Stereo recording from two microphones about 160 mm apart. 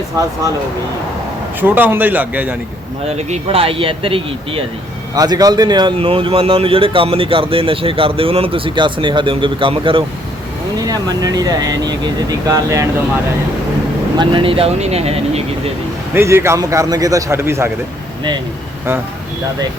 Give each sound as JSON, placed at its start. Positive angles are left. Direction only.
{"t": 1.6, "sound": "speech", "side_deg": -10}
{"t": 3.1, "sound": "speech", "side_deg": -45}
{"t": 5.1, "sound": "speech", "side_deg": -25}
{"t": 14.2, "sound": "speech", "side_deg": -35}
{"t": 16.1, "sound": "speech", "side_deg": -15}